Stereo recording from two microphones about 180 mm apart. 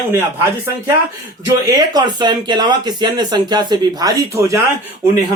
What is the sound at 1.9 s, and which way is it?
Speech, 25° right (ahead or behind).